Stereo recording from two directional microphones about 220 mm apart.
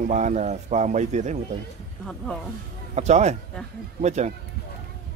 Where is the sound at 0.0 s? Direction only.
30° right (ahead or behind).